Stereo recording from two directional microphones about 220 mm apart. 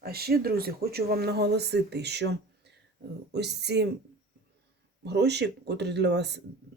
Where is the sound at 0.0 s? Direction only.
45° right (ahead or behind).